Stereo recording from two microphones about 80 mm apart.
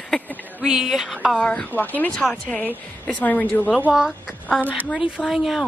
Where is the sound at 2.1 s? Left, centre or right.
Centre.